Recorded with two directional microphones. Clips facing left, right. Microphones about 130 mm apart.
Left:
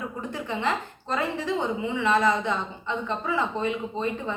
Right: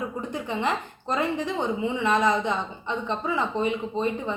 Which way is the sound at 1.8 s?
20° right (ahead or behind).